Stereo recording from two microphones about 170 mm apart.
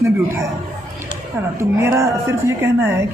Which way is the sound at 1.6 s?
15° right (ahead or behind).